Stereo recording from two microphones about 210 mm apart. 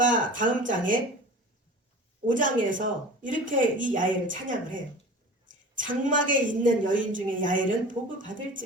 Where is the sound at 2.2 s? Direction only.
40° right (ahead or behind).